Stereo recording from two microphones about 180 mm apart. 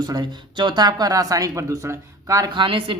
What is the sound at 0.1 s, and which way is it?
Speech, 25° right (ahead or behind).